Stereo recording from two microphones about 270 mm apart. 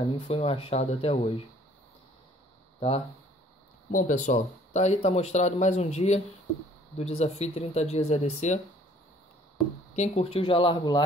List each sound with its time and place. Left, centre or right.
0.0 s speech: left
3.9 s speech: left
9.9 s speech: left